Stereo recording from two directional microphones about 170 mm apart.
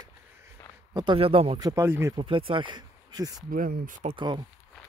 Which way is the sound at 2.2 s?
30° right (ahead or behind).